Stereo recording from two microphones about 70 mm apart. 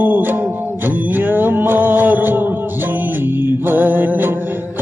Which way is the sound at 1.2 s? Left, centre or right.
Right.